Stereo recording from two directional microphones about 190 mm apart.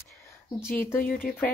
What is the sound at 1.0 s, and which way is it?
Speech, 50° left (ahead or behind).